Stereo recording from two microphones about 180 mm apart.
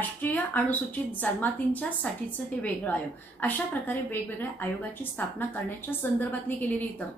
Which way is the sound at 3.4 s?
10° left (ahead or behind).